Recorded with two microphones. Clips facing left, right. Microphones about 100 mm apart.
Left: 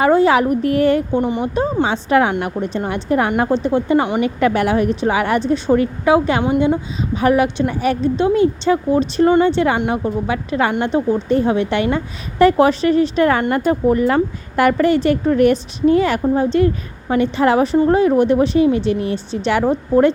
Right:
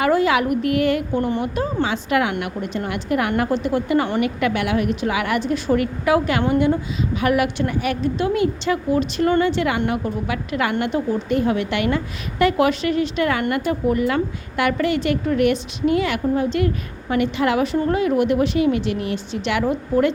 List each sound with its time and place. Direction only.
0.0 s a woman's voice: 30° left (ahead or behind)
1.1 s a woman's voice: 20° left (ahead or behind)